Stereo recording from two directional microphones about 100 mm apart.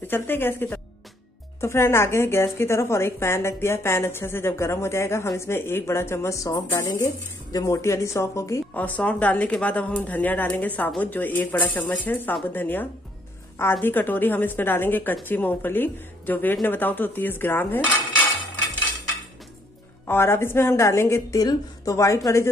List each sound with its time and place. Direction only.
0.0 s a woman's voice: 20° left (ahead or behind)
8.7 s a woman's voice: 15° left (ahead or behind)
20.1 s a woman's voice: 25° left (ahead or behind)